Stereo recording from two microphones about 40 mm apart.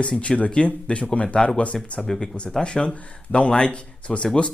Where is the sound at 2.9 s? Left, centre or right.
Left.